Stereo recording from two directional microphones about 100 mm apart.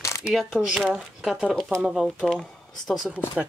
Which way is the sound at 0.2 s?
Centre (ahead or behind).